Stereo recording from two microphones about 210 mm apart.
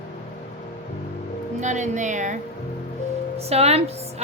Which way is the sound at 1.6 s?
35° right (ahead or behind).